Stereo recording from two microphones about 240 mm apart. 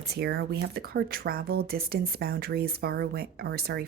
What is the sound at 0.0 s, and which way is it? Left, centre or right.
Speech, right.